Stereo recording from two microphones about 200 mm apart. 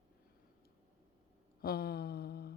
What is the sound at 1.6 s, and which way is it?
Speech, 50° left (ahead or behind).